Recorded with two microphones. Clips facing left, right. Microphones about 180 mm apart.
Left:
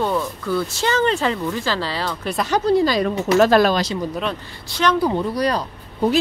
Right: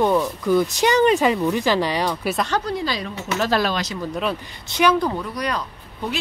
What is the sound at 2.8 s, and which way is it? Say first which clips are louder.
Speech: left 8 dB; 45° left (ahead or behind).